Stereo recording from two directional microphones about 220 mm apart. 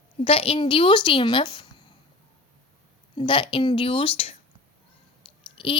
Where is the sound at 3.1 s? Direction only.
25° left (ahead or behind).